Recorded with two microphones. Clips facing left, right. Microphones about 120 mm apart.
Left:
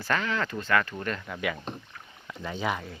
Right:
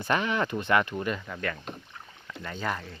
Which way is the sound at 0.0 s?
20° right (ahead or behind).